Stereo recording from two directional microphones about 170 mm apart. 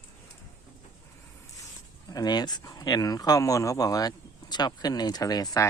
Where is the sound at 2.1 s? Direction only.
25° left (ahead or behind).